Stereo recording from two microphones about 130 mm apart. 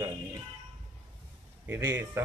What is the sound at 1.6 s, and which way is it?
Speech, 20° right (ahead or behind).